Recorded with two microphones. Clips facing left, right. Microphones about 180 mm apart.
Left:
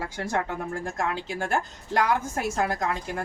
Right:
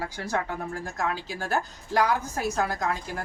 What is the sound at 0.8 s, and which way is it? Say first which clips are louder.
A woman's voice: left 1 dB; 25° left (ahead or behind).